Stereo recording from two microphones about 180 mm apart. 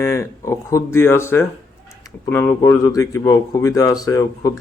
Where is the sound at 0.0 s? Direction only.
15° left (ahead or behind).